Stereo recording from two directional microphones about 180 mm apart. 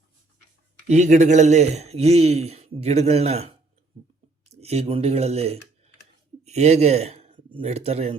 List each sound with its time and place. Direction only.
0.9 s a man's voice: 40° right (ahead or behind)